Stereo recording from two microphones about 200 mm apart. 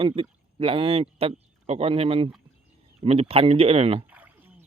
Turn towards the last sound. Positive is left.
turn(degrees=-10)  # may be behind; listen again after turning